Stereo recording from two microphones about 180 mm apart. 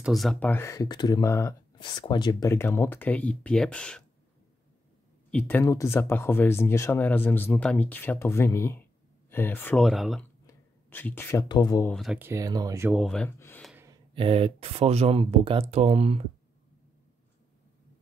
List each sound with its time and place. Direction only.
0.0 s speech: centre (ahead or behind)
5.3 s speech: 10° left (ahead or behind)
10.4 s a sound: 10° left (ahead or behind)
11.4 s speech: 25° left (ahead or behind)
11.9 s speech: centre (ahead or behind)
12.2 s speech: 15° right (ahead or behind)
12.9 s speech: 5° left (ahead or behind)
14.1 s speech: 30° right (ahead or behind)